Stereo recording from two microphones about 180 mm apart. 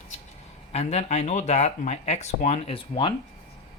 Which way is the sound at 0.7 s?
35° left (ahead or behind).